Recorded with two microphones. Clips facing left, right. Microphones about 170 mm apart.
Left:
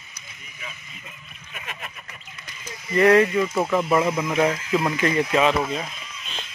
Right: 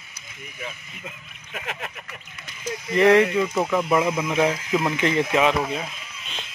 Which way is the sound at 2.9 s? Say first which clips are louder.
Even; 20° right (ahead or behind).